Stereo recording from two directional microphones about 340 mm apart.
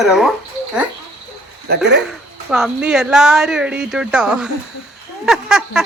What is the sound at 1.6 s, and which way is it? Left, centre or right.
Speech, right.